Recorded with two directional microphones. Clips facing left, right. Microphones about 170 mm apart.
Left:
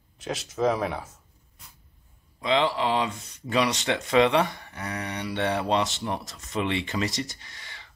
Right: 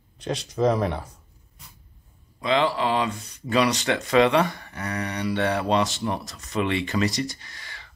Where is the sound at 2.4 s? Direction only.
20° left (ahead or behind).